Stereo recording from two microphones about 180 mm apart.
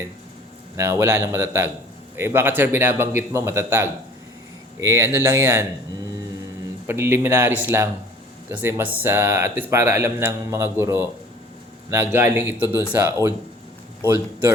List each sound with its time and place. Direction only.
0.8 s speech: 15° right (ahead or behind)
6.8 s speech: 15° right (ahead or behind)